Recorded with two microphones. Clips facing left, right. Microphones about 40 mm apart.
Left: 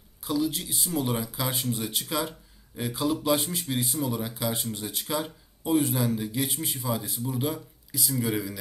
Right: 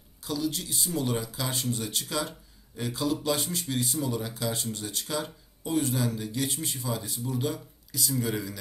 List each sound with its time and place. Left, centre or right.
0.2 s speech: centre